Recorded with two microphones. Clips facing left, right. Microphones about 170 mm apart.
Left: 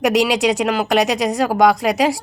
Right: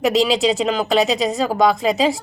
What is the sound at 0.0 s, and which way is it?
A woman's voice, 15° left (ahead or behind).